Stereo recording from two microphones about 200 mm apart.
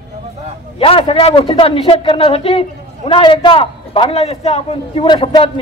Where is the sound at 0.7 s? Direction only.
25° left (ahead or behind).